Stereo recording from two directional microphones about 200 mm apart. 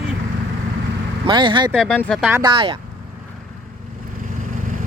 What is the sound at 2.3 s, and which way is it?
Speech, 25° right (ahead or behind).